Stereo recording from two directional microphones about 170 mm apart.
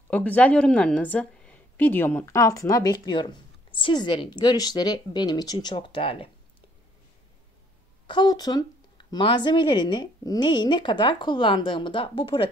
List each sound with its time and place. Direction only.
0.1 s a woman's voice: 10° left (ahead or behind); by 6.3 s 30° left (ahead or behind)
8.1 s a woman's voice: 25° left (ahead or behind)